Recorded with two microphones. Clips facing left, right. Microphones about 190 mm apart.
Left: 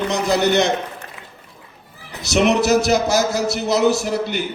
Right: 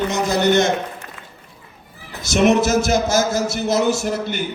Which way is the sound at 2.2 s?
50° right (ahead or behind).